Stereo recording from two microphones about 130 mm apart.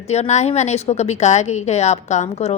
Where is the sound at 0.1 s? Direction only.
60° left (ahead or behind).